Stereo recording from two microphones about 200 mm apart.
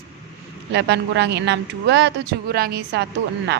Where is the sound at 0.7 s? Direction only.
55° right (ahead or behind).